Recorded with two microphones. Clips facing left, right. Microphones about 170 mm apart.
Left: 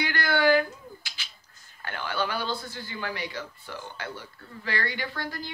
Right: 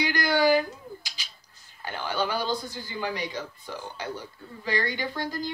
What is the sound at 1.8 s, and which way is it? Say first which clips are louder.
Speech: right 1 dB; 15° right (ahead or behind).